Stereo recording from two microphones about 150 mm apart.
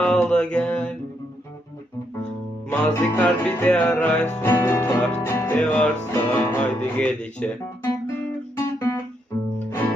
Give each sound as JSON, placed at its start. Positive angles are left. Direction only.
{"t": 0.0, "sound": "mantra", "side_deg": 5}
{"t": 2.6, "sound": "music", "side_deg": 15}
{"t": 8.5, "sound": "guitar", "side_deg": 20}
{"t": 9.6, "sound": "music", "side_deg": 15}